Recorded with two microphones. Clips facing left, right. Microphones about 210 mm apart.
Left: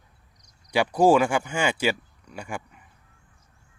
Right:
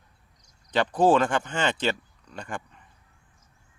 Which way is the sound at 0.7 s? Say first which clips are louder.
Left 2 dB; 10° left (ahead or behind).